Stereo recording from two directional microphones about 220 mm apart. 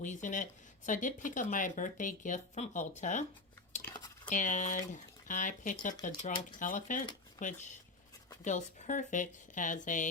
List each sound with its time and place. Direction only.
0.0 s speech: 35° left (ahead or behind)
4.3 s speech: 35° left (ahead or behind)